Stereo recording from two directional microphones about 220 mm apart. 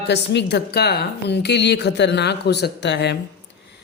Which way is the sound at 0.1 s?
50° left (ahead or behind).